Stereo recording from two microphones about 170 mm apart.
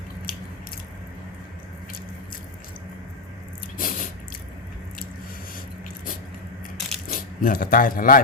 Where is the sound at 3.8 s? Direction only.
55° left (ahead or behind).